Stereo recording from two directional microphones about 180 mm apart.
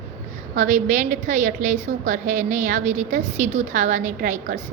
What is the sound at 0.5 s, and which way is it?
A woman's voice, 45° right (ahead or behind).